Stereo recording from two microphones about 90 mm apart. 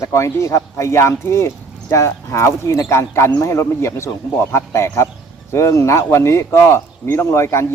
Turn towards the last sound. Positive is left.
turn(degrees=30)  # may be behind; listen again after turning